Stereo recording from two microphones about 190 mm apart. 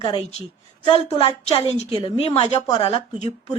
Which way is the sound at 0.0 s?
30° left (ahead or behind).